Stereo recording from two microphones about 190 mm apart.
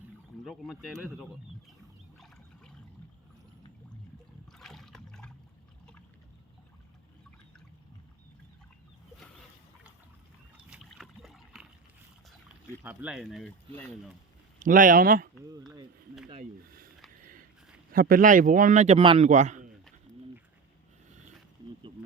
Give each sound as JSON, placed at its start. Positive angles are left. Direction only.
{"t": 0.4, "sound": "speech", "side_deg": 0}
{"t": 2.1, "sound": "trickle", "side_deg": 0}
{"t": 4.5, "sound": "liquid", "side_deg": 0}
{"t": 10.7, "sound": "boat", "side_deg": 0}
{"t": 12.8, "sound": "speech", "side_deg": -10}
{"t": 14.6, "sound": "speech", "side_deg": -45}
{"t": 16.3, "sound": "speech", "side_deg": -45}
{"t": 17.9, "sound": "speech", "side_deg": -50}